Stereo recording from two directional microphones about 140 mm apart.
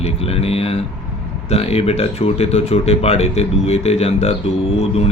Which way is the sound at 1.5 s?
45° left (ahead or behind).